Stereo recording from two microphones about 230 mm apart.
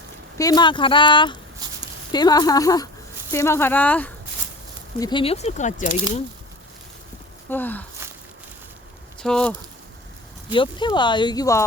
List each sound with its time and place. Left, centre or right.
0.3 s speech: centre
1.6 s a sound: centre
2.1 s speech: centre
4.9 s speech: centre
7.5 s speech: centre
9.2 s speech: centre
10.5 s speech: left